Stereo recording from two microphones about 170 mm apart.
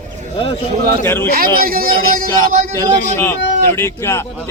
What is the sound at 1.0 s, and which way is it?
Speech, 15° left (ahead or behind).